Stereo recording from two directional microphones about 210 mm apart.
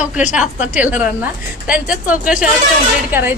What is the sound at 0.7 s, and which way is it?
Speech, 10° right (ahead or behind).